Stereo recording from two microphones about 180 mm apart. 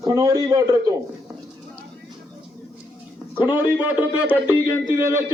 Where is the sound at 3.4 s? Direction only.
10° right (ahead or behind).